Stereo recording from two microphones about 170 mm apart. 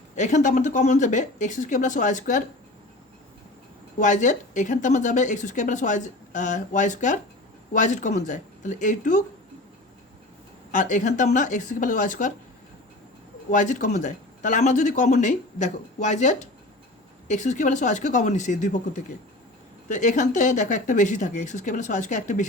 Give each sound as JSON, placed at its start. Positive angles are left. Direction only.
{"t": 0.2, "sound": "a woman's voice", "side_deg": 45}
{"t": 3.9, "sound": "a woman's voice", "side_deg": 45}
{"t": 10.7, "sound": "a woman's voice", "side_deg": 50}
{"t": 13.5, "sound": "a woman's voice", "side_deg": 50}